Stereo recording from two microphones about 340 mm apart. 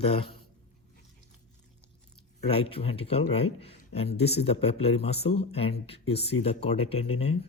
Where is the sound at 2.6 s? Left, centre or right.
Centre.